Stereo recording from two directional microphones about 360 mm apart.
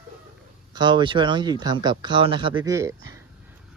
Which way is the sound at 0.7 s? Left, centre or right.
Centre.